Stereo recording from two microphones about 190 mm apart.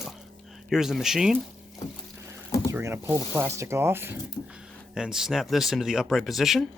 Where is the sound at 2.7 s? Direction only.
15° right (ahead or behind).